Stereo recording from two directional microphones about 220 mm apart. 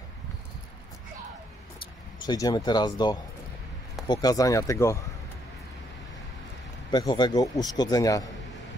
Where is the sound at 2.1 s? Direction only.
20° left (ahead or behind).